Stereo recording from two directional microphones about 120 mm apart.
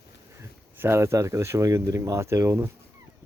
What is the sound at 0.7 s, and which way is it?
Speech, 20° right (ahead or behind).